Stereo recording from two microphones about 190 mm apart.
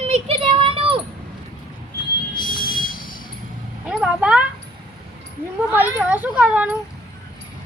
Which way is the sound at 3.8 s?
5° right (ahead or behind).